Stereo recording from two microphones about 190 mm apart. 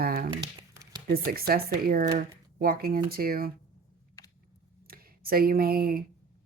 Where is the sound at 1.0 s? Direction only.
50° right (ahead or behind).